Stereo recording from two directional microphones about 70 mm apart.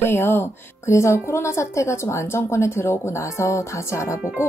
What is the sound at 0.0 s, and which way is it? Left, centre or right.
Speech, left.